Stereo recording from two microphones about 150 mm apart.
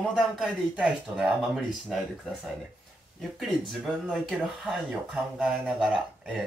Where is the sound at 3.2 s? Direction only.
Centre (ahead or behind).